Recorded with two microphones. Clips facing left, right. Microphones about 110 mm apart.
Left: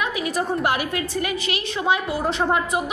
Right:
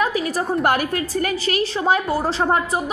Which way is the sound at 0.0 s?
35° right (ahead or behind).